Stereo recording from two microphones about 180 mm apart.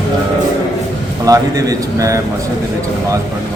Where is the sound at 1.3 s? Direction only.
20° right (ahead or behind).